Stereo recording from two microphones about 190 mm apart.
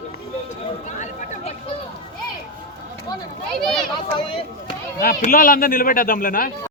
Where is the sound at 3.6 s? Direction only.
Centre (ahead or behind).